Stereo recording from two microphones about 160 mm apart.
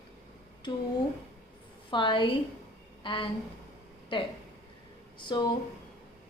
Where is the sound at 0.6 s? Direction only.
30° left (ahead or behind).